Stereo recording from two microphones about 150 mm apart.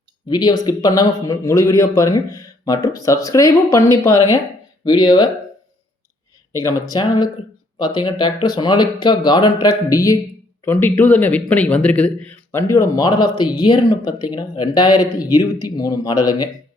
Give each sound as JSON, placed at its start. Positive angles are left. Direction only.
{"t": 0.3, "sound": "speech", "side_deg": 25}
{"t": 6.5, "sound": "speech", "side_deg": 20}